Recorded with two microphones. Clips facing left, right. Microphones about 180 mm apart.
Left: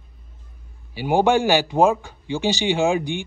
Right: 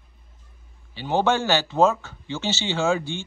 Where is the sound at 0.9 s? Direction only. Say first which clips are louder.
Left 4 dB; 10° left (ahead or behind).